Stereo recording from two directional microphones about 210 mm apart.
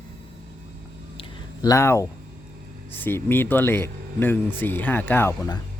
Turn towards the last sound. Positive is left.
turn(degrees=10)  # may be behind; listen again after turning